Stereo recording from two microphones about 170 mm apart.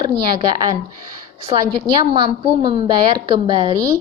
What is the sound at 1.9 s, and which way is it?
A woman's voice, 25° right (ahead or behind).